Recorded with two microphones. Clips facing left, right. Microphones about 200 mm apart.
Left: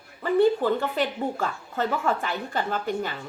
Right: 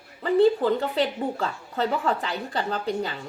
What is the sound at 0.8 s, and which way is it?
A woman's voice, 35° right (ahead or behind).